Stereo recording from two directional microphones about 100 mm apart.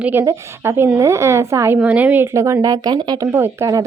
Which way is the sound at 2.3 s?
30° right (ahead or behind).